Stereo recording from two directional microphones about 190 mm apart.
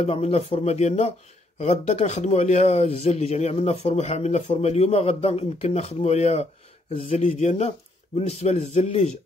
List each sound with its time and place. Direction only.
0.0 s speech: 35° left (ahead or behind)